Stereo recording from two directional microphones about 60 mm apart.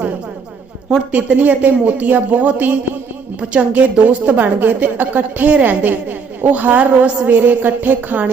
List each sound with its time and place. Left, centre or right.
1.1 s a woman's voice: right